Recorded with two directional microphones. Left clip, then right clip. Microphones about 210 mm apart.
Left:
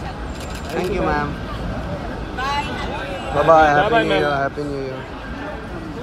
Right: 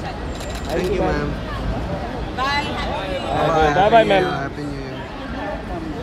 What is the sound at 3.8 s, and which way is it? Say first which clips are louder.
Speech: right 3 dB; 45° right (ahead or behind).